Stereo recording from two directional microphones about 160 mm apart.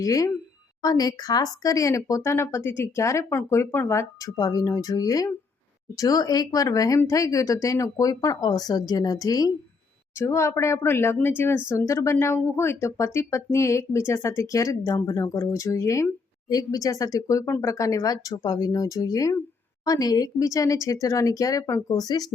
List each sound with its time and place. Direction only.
0.0 s speech: 20° left (ahead or behind)